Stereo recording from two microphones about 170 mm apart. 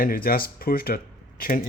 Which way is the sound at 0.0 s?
55° left (ahead or behind).